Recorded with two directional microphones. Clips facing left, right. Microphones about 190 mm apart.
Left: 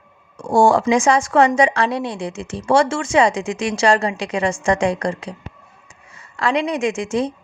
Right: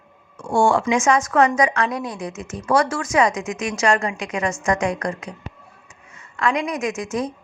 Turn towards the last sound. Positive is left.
turn(degrees=30)  # may be behind; listen again after turning